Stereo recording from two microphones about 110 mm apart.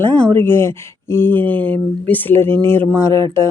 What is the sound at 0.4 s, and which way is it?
Speech, 20° left (ahead or behind).